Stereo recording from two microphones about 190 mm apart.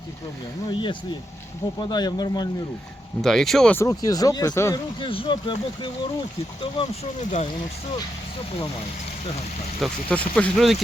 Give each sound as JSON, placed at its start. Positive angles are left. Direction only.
{"t": 0.7, "sound": "speech", "side_deg": 25}
{"t": 3.2, "sound": "speech", "side_deg": 0}
{"t": 3.8, "sound": "speech", "side_deg": 20}
{"t": 4.9, "sound": "speech", "side_deg": 25}
{"t": 9.8, "sound": "speech", "side_deg": 5}